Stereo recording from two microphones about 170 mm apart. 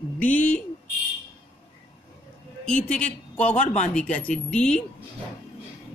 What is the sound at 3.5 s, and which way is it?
Speech, 45° left (ahead or behind).